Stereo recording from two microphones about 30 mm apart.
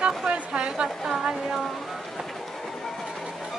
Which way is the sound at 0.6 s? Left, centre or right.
Right.